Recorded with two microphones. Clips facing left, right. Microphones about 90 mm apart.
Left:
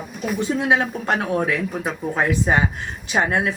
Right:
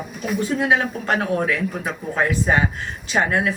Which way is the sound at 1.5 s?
20° left (ahead or behind).